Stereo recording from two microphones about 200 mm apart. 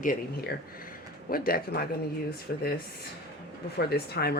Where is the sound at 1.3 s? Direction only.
45° left (ahead or behind).